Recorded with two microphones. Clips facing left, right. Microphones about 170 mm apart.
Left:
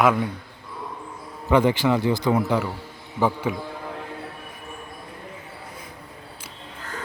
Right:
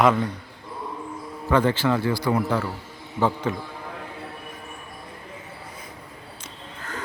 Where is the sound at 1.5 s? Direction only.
15° left (ahead or behind).